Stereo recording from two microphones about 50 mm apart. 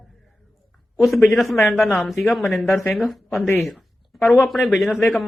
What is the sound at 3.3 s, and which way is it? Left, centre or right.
Speech, left.